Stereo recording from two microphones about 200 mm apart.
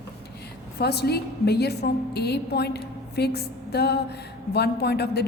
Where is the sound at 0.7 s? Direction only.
55° left (ahead or behind).